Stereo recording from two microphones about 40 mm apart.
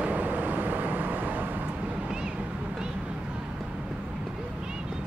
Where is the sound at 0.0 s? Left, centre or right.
Right.